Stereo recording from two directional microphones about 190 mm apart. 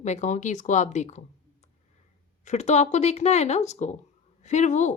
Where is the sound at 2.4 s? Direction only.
35° left (ahead or behind).